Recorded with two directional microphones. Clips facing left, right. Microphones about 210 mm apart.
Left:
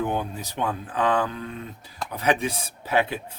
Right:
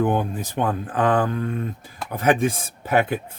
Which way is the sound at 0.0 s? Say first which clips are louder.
Right 5 dB; 50° right (ahead or behind).